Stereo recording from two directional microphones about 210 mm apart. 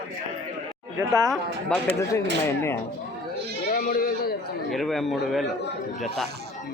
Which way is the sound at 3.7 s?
40° left (ahead or behind).